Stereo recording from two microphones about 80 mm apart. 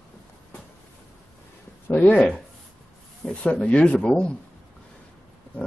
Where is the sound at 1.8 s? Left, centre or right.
Left.